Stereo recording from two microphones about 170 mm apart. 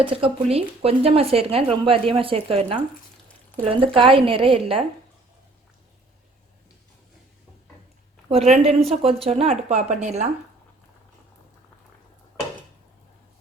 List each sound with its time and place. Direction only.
0.0 s speech: 35° right (ahead or behind)
8.3 s speech: 35° right (ahead or behind)